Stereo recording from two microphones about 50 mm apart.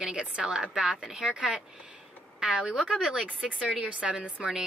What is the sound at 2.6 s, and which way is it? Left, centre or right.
A woman's voice, centre.